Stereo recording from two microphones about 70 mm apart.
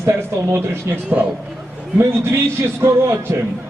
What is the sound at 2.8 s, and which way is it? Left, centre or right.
Speech, right.